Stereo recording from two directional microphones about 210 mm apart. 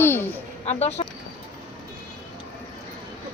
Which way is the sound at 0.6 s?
30° left (ahead or behind).